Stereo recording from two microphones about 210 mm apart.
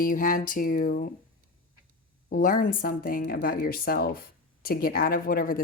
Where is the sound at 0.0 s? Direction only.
40° left (ahead or behind).